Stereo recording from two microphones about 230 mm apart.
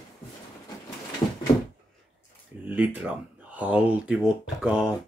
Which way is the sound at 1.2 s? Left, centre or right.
Centre.